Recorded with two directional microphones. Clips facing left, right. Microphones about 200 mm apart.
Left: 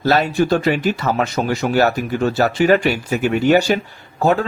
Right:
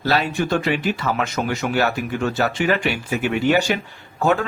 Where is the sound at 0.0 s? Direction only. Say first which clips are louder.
Left 5 dB; 45° left (ahead or behind).